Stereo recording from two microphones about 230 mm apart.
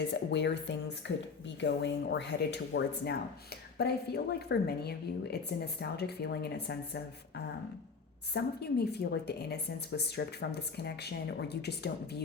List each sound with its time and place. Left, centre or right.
0.3 s a woman's voice: left